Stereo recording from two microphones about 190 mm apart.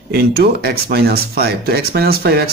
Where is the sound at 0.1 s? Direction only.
55° right (ahead or behind).